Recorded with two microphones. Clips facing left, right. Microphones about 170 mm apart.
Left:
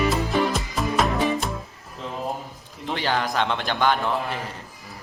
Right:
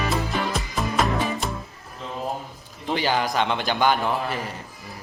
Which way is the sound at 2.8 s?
Centre (ahead or behind).